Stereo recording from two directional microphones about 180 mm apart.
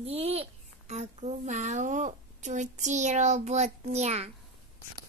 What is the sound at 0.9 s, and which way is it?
A woman's voice, 35° right (ahead or behind).